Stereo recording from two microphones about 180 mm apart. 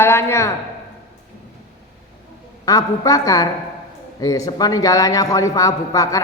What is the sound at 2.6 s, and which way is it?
A man's voice, 20° left (ahead or behind).